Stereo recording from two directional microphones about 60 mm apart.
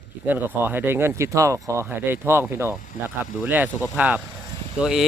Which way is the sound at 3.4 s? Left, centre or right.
Right.